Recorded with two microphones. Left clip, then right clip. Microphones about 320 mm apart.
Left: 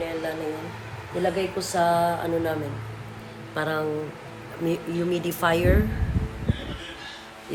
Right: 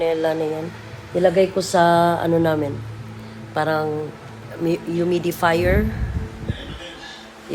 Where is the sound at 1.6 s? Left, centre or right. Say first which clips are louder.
Right 3 dB; right.